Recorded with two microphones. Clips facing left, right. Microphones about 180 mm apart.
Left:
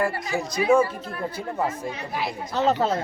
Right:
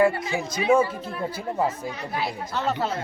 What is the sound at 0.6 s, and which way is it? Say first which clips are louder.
Speech: left 1 dB; 25° right (ahead or behind).